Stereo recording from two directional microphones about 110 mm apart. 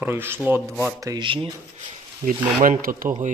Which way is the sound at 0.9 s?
30° right (ahead or behind).